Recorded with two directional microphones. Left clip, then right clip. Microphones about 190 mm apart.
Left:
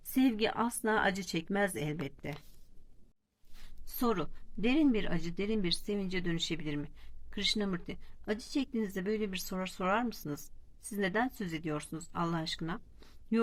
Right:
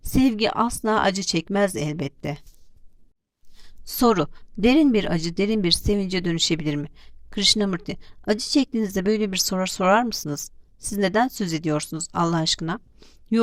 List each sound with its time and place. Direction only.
0.2 s speech: 40° right (ahead or behind)
3.8 s a woman's voice: 45° right (ahead or behind)
13.0 s a sound: 25° right (ahead or behind)